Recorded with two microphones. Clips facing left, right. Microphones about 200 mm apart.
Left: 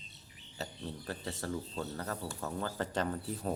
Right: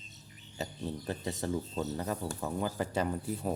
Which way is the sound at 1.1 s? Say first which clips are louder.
Right 4 dB; 20° right (ahead or behind).